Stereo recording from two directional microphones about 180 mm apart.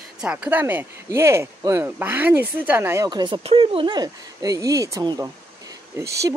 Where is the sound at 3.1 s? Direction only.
25° right (ahead or behind).